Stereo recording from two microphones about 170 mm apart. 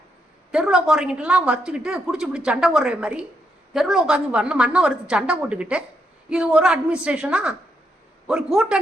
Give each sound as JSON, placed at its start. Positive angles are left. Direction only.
{"t": 0.5, "sound": "a woman's voice", "side_deg": -5}